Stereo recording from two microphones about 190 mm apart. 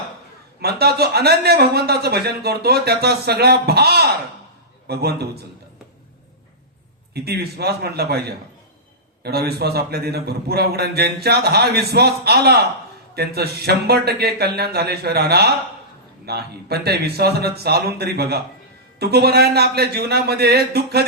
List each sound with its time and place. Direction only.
0.6 s a man's voice: 55° right (ahead or behind)
7.1 s a man's voice: 55° right (ahead or behind)